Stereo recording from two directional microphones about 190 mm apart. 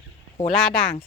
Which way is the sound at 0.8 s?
30° left (ahead or behind).